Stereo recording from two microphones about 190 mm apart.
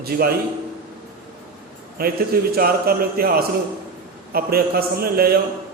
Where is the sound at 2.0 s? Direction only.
55° right (ahead or behind).